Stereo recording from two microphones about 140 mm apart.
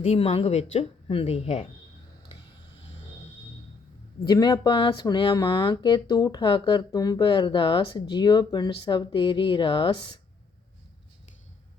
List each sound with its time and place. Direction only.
0.2 s a woman's voice: 45° left (ahead or behind)
4.2 s speech: 30° left (ahead or behind)